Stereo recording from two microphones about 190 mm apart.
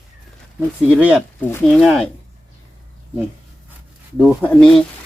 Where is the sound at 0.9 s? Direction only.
5° right (ahead or behind).